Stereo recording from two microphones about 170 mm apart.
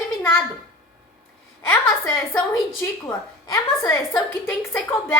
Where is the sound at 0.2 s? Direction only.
10° left (ahead or behind).